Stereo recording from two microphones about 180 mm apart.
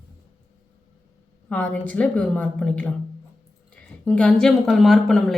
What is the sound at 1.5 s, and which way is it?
A woman's voice, 5° left (ahead or behind).